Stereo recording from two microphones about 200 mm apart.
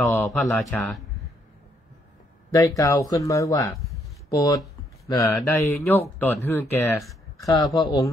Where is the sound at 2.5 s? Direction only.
15° left (ahead or behind).